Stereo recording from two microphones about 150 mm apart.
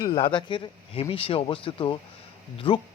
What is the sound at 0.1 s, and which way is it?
Speech, 30° left (ahead or behind).